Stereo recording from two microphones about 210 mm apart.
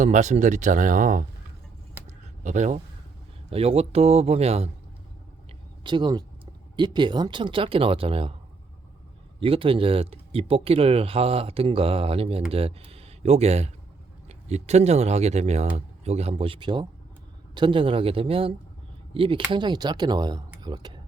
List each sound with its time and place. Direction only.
0.0 s speech: 35° right (ahead or behind)
2.0 s a sound: 35° right (ahead or behind)
3.5 s speech: 25° right (ahead or behind)
5.8 s speech: 20° right (ahead or behind)
9.4 s speech: 25° right (ahead or behind)
20.6 s a sound: 20° right (ahead or behind)